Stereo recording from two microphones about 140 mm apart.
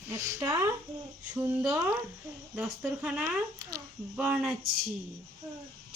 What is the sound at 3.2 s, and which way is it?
Speech, 25° right (ahead or behind).